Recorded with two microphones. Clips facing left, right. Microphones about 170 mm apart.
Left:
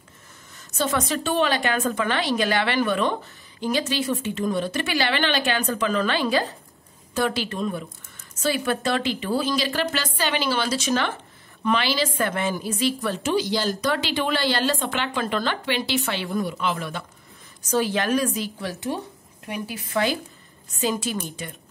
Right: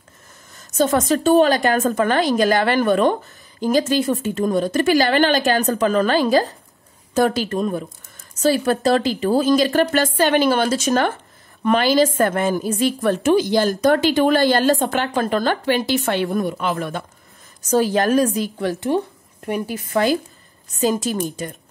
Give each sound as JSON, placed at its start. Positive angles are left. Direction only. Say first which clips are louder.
{"t": 0.6, "sound": "a woman's voice", "louder": "right 7 dB", "side_deg": -45}